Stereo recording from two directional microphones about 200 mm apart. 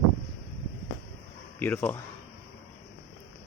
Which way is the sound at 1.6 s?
10° left (ahead or behind).